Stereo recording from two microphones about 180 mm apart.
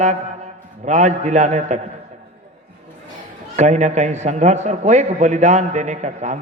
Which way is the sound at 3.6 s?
40° right (ahead or behind).